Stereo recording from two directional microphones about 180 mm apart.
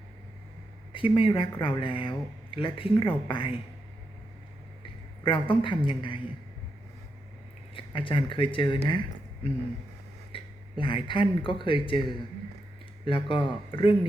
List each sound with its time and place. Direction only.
0.9 s speech: 30° left (ahead or behind)
5.2 s speech: 30° left (ahead or behind)
7.8 s speech: 30° left (ahead or behind)
8.9 s a sound: 25° left (ahead or behind)
10.3 s speech: 30° left (ahead or behind)
13.1 s speech: 30° left (ahead or behind)